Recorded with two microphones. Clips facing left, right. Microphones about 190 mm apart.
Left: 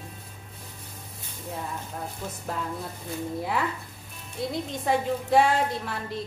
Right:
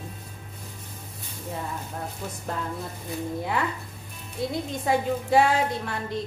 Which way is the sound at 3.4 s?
Centre (ahead or behind).